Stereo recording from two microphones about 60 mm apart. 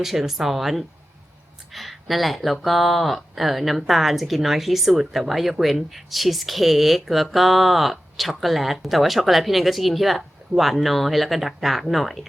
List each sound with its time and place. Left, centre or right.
0.0 s speech: centre